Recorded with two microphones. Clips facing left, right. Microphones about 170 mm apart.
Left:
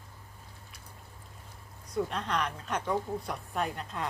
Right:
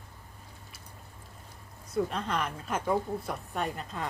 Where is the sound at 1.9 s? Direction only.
Centre (ahead or behind).